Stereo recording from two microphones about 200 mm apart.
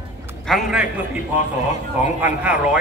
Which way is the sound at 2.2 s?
5° right (ahead or behind).